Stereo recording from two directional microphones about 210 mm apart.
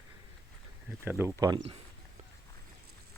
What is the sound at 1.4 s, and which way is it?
Speech, 20° right (ahead or behind).